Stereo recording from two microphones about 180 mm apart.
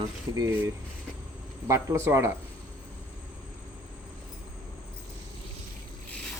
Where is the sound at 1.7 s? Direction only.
15° right (ahead or behind).